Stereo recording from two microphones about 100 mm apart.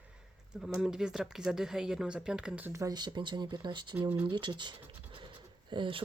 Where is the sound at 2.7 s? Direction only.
30° right (ahead or behind).